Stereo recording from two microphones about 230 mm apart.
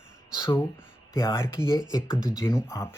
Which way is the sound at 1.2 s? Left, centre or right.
Centre.